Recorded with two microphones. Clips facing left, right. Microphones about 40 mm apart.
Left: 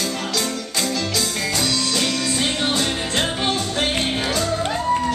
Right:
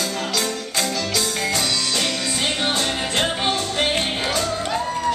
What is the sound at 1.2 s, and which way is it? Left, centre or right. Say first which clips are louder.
Music: even; centre.